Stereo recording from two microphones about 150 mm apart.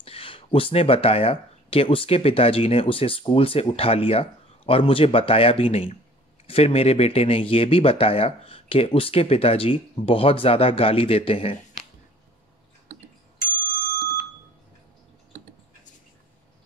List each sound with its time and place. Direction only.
0.0 s speech: 40° left (ahead or behind)